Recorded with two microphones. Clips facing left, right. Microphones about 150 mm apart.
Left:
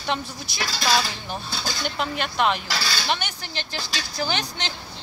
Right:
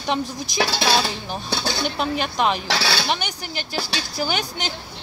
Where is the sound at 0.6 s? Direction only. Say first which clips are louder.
Right 3 dB; 70° right (ahead or behind).